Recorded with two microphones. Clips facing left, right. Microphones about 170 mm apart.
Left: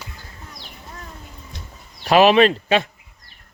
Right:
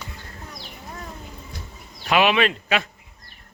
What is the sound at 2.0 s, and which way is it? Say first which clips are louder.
Speech: left 6 dB; 35° left (ahead or behind).